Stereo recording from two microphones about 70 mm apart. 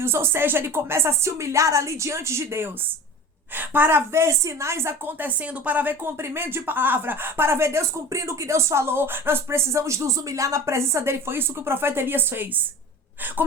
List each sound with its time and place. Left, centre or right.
0.0 s a woman's voice: right
3.5 s a woman's voice: right